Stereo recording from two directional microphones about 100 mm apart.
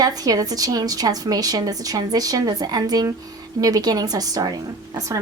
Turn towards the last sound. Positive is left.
turn(degrees=-40)  # may be behind; listen again after turning